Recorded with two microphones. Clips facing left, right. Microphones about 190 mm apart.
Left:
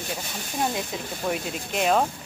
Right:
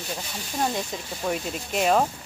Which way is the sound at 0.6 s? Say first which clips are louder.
Even; centre (ahead or behind).